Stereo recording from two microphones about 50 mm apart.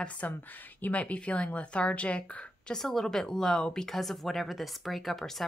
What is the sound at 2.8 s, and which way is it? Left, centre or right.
Speech, centre.